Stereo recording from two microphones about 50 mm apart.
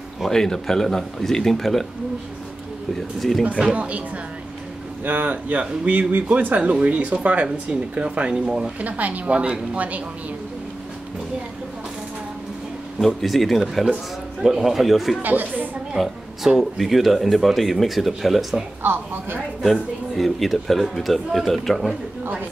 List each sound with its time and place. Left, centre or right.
0.3 s speech: centre
3.2 s speech: centre
3.7 s a woman's voice: right
5.0 s a woman's voice: right; by 8.7 s centre
8.8 s a woman's voice: right
13.0 s speech: centre
15.2 s speech: right
16.0 s speech: centre
18.8 s a woman's voice: right
19.6 s speech: centre